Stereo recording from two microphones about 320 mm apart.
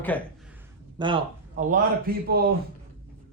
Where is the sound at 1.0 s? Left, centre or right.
Centre.